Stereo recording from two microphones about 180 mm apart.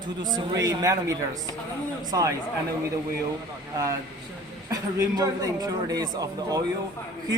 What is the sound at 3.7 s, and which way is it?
Speech, 20° right (ahead or behind).